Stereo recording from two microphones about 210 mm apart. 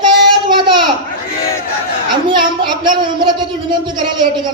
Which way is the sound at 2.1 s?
20° right (ahead or behind).